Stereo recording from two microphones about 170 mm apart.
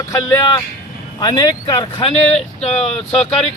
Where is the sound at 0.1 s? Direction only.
15° left (ahead or behind).